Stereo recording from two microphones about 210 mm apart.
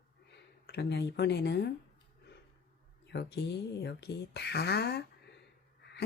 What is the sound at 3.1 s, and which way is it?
Speech, 50° left (ahead or behind).